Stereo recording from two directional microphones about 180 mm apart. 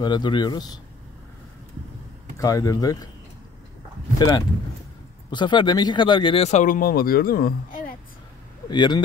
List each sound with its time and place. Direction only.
0.0 s speech: 25° left (ahead or behind)
2.3 s speech: 20° left (ahead or behind)
4.2 s speech: 15° left (ahead or behind); by 7.9 s 55° left (ahead or behind)
8.6 s speech: 25° left (ahead or behind)